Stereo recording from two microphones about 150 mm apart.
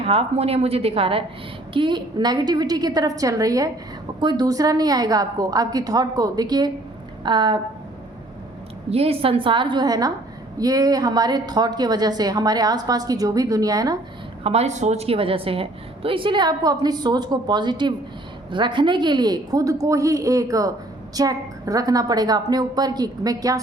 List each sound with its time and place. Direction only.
0.0 s a woman's voice: 40° right (ahead or behind)
8.9 s a woman's voice: 40° right (ahead or behind); by 14.0 s 25° right (ahead or behind)
14.4 s a woman's voice: 45° right (ahead or behind); by 23.6 s 25° right (ahead or behind)